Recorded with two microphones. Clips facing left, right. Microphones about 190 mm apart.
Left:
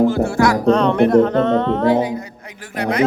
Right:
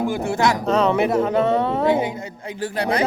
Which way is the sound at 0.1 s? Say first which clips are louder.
Left 4 dB; 20° right (ahead or behind).